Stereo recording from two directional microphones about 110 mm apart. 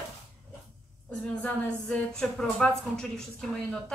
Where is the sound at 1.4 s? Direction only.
10° left (ahead or behind).